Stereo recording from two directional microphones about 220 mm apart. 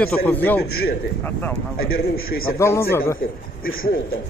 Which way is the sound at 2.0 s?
45° left (ahead or behind).